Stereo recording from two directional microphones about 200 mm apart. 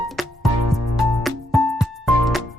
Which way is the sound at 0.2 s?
Centre (ahead or behind).